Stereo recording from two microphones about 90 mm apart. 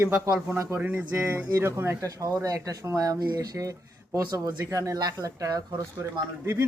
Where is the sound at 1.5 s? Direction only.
30° right (ahead or behind).